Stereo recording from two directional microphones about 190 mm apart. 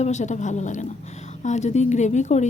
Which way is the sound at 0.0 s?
40° left (ahead or behind).